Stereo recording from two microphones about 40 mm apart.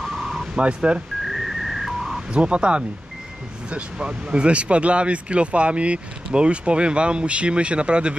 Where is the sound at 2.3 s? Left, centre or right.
Right.